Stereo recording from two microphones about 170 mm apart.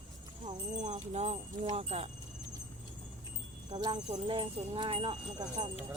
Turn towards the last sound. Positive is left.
turn(degrees=-25)  # may be behind; listen again after turning